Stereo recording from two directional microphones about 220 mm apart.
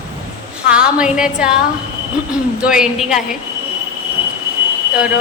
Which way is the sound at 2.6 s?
5° right (ahead or behind).